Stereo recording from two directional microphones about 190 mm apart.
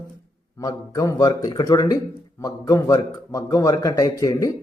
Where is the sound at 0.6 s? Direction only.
20° left (ahead or behind).